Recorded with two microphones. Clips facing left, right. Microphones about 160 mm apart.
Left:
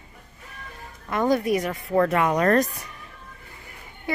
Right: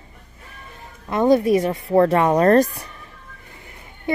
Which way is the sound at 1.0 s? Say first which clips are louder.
Right 6 dB; 25° right (ahead or behind).